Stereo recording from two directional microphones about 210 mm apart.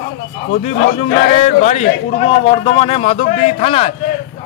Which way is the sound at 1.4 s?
35° left (ahead or behind).